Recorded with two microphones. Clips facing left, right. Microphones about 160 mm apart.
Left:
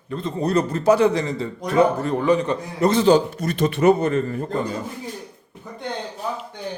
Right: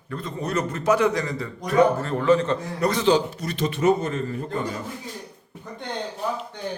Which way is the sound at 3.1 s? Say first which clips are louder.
Left 4 dB; 50° left (ahead or behind).